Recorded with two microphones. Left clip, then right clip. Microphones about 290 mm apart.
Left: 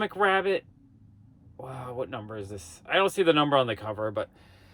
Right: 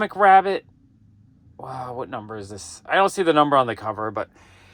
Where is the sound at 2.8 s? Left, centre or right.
Centre.